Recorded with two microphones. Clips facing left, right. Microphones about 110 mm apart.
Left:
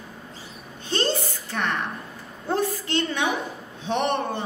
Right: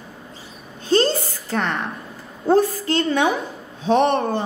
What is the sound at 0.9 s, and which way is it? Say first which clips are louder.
A woman's voice: right 7 dB; 35° right (ahead or behind).